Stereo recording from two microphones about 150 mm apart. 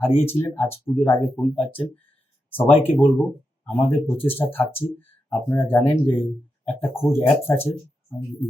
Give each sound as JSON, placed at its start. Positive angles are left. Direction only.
{"t": 0.0, "sound": "speech", "side_deg": 15}